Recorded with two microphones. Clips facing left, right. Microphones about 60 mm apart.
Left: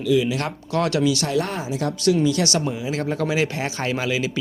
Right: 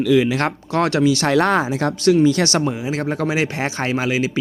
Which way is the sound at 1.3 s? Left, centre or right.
Right.